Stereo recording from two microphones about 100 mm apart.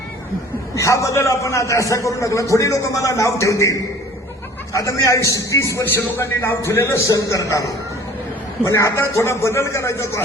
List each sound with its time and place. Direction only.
0.8 s a man's voice: 30° left (ahead or behind)